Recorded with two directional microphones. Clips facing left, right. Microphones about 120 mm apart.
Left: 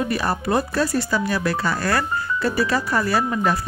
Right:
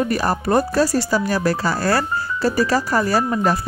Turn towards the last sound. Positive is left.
turn(degrees=-35)  # may be behind; listen again after turning